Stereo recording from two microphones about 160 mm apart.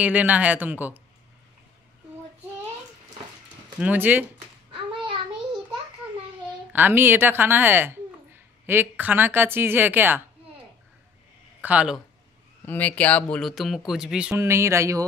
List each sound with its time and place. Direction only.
0.0 s speech: 10° right (ahead or behind)
3.8 s speech: 10° right (ahead or behind)
4.9 s a sound: 30° right (ahead or behind)
6.7 s speech: 10° right (ahead or behind)
11.6 s speech: 10° right (ahead or behind)
12.6 s speech: 10° left (ahead or behind); by 14.3 s 5° right (ahead or behind)
14.3 s speech: 15° right (ahead or behind)